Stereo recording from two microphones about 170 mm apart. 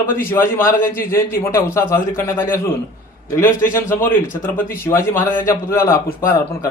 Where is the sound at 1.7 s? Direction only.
15° left (ahead or behind).